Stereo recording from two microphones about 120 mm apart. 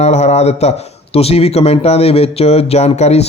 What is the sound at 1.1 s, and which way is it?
Speech, 55° left (ahead or behind).